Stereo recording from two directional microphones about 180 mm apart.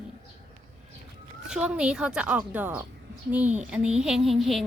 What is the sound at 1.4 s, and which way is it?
A woman's voice, 5° right (ahead or behind).